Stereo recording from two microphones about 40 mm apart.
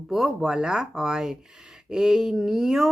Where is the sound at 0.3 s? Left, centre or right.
Centre.